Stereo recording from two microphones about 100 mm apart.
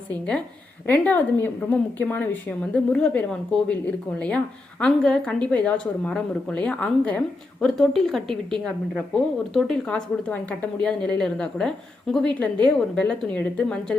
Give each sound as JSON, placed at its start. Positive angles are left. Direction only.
{"t": 0.1, "sound": "a woman's voice", "side_deg": 10}
{"t": 7.6, "sound": "speech", "side_deg": 0}
{"t": 9.5, "sound": "a woman's voice", "side_deg": 5}